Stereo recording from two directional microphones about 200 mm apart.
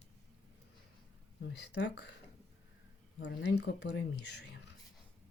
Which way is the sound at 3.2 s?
60° left (ahead or behind).